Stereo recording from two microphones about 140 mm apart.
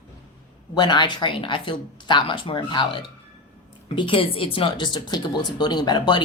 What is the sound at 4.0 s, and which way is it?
Speech, 40° left (ahead or behind).